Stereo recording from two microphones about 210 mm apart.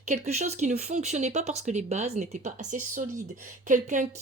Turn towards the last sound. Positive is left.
turn(degrees=-35)  # may be behind; listen again after turning